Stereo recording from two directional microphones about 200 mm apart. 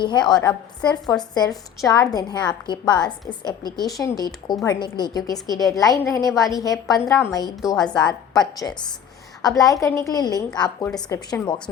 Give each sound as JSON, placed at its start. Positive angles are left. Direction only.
{"t": 0.0, "sound": "a woman's voice", "side_deg": 20}
{"t": 7.0, "sound": "a woman's voice", "side_deg": 0}
{"t": 8.0, "sound": "a woman's voice", "side_deg": 20}